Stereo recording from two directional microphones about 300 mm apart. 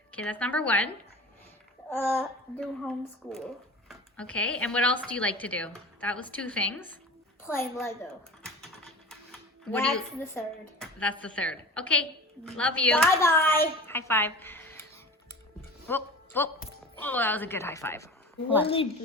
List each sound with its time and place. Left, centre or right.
0.1 s speech: centre
1.9 s a sound: centre
2.1 s a woman's voice: centre
9.7 s a woman's voice: centre
15.9 s music: centre
17.0 s a woman's voice: centre